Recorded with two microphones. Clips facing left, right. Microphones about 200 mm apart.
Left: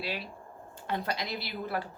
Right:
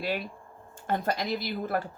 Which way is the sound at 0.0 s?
50° right (ahead or behind).